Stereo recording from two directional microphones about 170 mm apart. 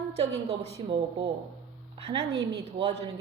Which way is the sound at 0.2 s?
35° right (ahead or behind).